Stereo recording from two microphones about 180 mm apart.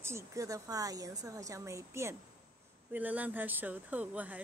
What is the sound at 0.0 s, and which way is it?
Speech, 15° right (ahead or behind).